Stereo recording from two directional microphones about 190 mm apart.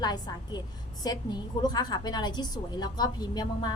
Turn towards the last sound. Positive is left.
turn(degrees=20)  # may be behind; listen again after turning